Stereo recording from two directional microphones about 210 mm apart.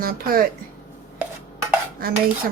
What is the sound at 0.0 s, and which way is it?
Speech, 45° right (ahead or behind).